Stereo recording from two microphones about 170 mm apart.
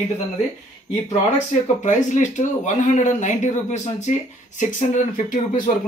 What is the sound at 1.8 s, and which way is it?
Speech, 45° left (ahead or behind).